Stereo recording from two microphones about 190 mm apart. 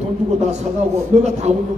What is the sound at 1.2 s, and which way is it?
Speech, 35° right (ahead or behind).